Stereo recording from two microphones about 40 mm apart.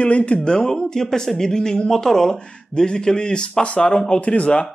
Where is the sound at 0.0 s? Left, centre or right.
Left.